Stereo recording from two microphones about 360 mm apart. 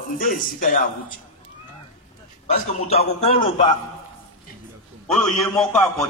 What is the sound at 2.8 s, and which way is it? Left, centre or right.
Speech, centre.